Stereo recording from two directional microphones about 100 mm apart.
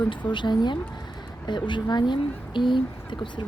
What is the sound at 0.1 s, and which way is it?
Speech, 50° left (ahead or behind).